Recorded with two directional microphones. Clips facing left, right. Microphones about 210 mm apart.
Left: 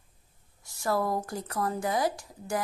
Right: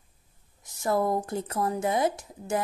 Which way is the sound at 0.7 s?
20° right (ahead or behind).